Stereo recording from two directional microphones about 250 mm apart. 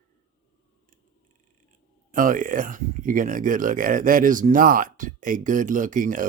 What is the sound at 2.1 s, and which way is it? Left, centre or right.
Speech, right.